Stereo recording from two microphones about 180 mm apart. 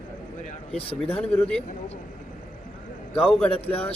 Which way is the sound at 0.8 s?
30° left (ahead or behind).